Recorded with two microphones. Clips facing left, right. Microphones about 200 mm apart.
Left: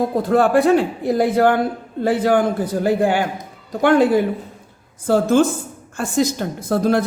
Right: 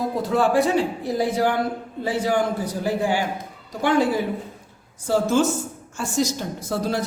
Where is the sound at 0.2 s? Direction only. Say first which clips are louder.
Left 4 dB; 55° left (ahead or behind).